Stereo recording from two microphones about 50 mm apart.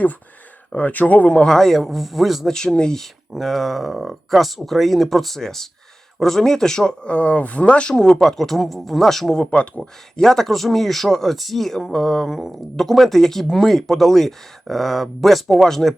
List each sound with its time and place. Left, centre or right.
0.8 s speech: left
1.5 s speech: centre
2.5 s speech: centre
3.3 s speech: centre
8.1 s speech: centre
9.4 s speech: left
9.8 s speech: centre